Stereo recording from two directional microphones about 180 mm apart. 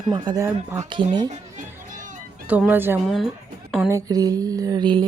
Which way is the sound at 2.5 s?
10° right (ahead or behind).